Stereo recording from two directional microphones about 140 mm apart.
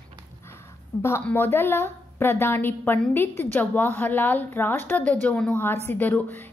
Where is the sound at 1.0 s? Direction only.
15° left (ahead or behind).